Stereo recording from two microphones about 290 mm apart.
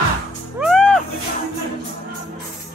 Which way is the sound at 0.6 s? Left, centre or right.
Centre.